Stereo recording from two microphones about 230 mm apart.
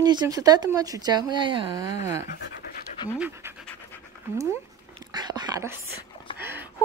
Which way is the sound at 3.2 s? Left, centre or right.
Centre.